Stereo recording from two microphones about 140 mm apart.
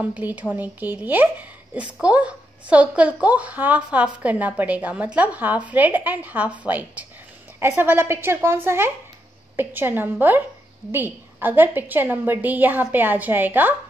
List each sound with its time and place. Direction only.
0.0 s speech: 10° right (ahead or behind)